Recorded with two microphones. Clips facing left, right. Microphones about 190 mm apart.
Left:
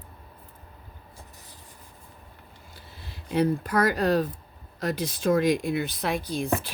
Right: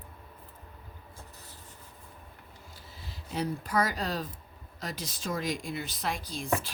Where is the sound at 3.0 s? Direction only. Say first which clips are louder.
Left 9 dB; 60° left (ahead or behind).